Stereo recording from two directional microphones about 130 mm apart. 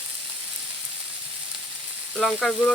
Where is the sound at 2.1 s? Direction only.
5° left (ahead or behind).